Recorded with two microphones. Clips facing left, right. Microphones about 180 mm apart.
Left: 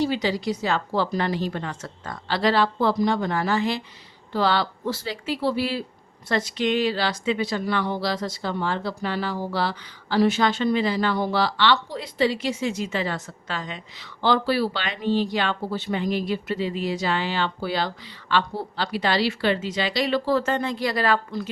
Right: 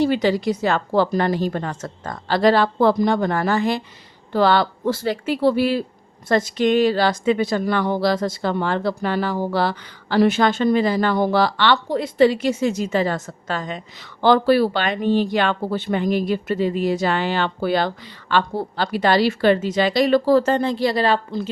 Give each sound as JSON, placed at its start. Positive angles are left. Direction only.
{"t": 0.0, "sound": "speech", "side_deg": -55}